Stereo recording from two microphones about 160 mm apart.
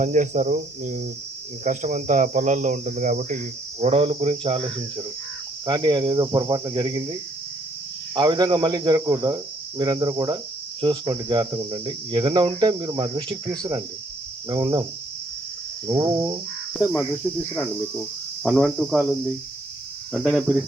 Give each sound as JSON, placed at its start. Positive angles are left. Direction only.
{"t": 0.0, "sound": "speech", "side_deg": -50}
{"t": 5.6, "sound": "cricket", "side_deg": -30}
{"t": 8.1, "sound": "cricket", "side_deg": -25}
{"t": 15.9, "sound": "cricket", "side_deg": -20}
{"t": 18.5, "sound": "speech", "side_deg": 5}
{"t": 20.1, "sound": "speech", "side_deg": -5}